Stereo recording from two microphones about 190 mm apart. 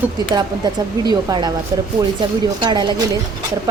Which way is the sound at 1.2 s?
20° right (ahead or behind).